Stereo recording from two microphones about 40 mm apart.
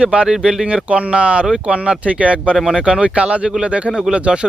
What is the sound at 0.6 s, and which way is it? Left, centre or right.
Speech, right.